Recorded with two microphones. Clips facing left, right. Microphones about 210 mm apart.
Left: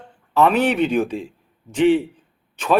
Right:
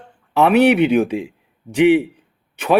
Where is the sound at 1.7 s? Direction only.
15° right (ahead or behind).